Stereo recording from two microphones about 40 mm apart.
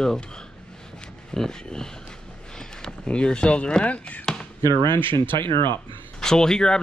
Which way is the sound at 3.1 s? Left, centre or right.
Left.